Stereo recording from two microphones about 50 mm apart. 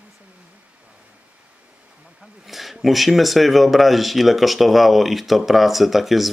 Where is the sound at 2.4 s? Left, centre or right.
Centre.